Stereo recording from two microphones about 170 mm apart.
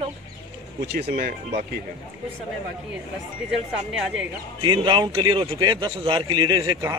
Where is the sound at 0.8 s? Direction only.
75° right (ahead or behind).